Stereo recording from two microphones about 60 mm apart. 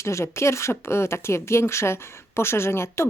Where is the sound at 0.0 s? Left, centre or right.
Left.